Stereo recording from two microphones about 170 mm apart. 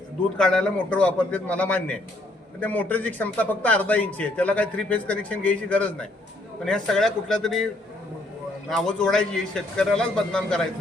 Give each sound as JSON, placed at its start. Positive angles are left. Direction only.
{"t": 0.3, "sound": "a man's voice", "side_deg": 5}
{"t": 8.7, "sound": "a man's voice", "side_deg": 5}